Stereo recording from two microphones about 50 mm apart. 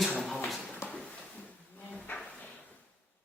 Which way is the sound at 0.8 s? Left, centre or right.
Left.